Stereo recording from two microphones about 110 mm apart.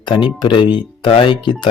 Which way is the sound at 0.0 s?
50° left (ahead or behind).